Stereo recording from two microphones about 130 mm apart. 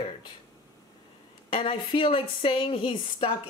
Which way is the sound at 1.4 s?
45° left (ahead or behind).